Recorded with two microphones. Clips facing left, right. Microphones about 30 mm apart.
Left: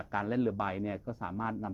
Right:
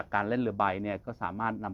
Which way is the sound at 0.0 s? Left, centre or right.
Centre.